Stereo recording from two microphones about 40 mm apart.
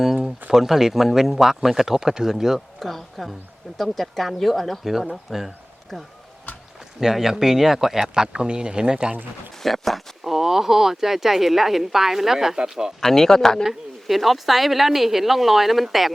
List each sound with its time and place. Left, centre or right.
0.5 s speech: centre
2.8 s a woman's voice: centre
5.3 s speech: centre
7.0 s speech: centre
8.1 s speech: centre
9.6 s speech: centre
13.0 s speech: centre
13.7 s a woman's voice: centre